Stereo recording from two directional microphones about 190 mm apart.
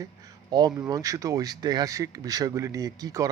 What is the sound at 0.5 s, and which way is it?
A man's voice, 20° right (ahead or behind).